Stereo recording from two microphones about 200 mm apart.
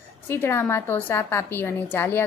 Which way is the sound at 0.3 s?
10° left (ahead or behind).